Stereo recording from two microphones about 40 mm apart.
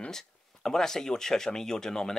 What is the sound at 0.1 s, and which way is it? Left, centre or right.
Speech, centre.